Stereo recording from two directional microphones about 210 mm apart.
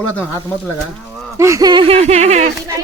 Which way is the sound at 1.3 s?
15° right (ahead or behind).